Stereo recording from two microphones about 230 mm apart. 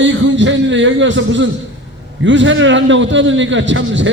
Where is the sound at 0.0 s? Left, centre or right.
Right.